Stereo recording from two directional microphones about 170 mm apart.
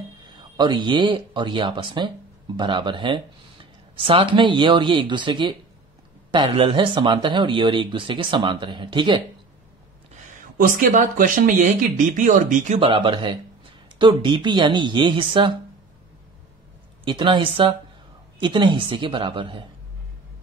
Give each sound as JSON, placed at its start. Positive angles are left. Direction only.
{"t": 0.4, "sound": "speech", "side_deg": -25}
{"t": 10.6, "sound": "speech", "side_deg": -55}
{"t": 12.8, "sound": "speech", "side_deg": -30}
{"t": 17.0, "sound": "a woman's voice", "side_deg": -30}